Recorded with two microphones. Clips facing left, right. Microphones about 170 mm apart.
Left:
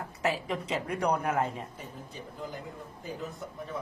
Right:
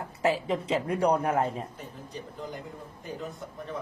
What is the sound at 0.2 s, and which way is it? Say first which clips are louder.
A man's voice: right 4 dB; 30° right (ahead or behind).